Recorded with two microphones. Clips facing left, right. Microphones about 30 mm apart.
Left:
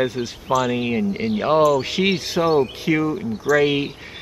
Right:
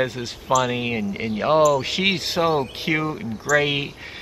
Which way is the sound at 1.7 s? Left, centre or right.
Centre.